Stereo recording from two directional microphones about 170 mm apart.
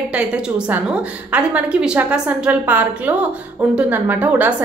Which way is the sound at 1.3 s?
10° right (ahead or behind).